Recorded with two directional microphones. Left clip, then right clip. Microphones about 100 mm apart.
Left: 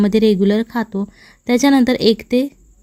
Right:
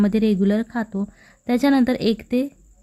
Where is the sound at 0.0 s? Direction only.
25° left (ahead or behind).